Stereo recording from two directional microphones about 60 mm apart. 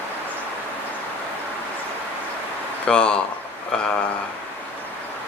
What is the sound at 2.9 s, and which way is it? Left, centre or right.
Speech, centre.